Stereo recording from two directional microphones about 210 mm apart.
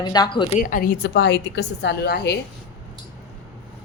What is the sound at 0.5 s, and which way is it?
A woman's voice, 40° left (ahead or behind).